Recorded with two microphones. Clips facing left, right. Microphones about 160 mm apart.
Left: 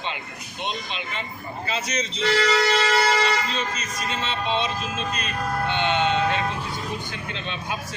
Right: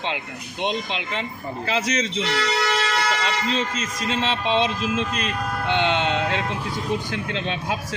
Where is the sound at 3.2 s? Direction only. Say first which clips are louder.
Right 1 dB; 90° right.